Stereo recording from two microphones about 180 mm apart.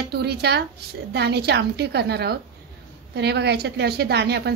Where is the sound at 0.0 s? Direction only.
60° right (ahead or behind).